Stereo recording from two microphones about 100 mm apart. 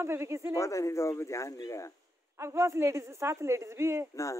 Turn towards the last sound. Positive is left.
turn(degrees=-25)  # may be behind; listen again after turning